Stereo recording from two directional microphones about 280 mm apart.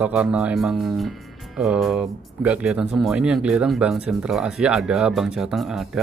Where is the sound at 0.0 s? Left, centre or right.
Centre.